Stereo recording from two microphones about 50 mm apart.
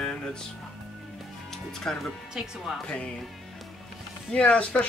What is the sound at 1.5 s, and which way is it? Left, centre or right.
Speech, centre.